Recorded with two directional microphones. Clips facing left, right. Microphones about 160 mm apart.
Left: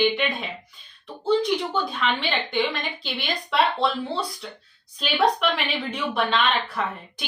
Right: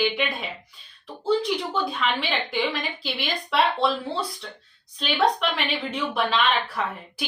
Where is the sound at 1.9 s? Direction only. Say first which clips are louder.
Left 1 dB; centre (ahead or behind).